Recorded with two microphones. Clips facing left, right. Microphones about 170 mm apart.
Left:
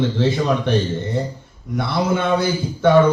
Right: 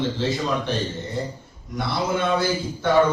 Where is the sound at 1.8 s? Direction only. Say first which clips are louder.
Left 4 dB; 55° left (ahead or behind).